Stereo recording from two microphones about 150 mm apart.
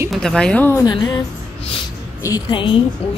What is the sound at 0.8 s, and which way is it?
Speech, 25° left (ahead or behind).